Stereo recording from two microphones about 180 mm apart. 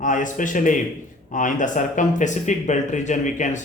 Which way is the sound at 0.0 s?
45° left (ahead or behind).